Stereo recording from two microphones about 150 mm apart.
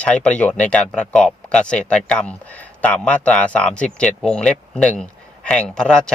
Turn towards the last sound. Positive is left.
turn(degrees=5)  # may be behind; listen again after turning